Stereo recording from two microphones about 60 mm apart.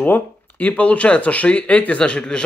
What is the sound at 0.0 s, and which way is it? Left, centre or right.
Speech, left.